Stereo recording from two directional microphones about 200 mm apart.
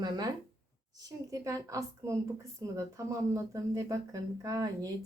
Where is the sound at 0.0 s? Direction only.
20° right (ahead or behind).